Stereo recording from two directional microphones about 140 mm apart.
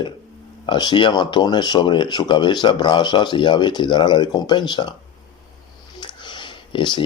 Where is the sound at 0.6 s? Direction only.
30° left (ahead or behind).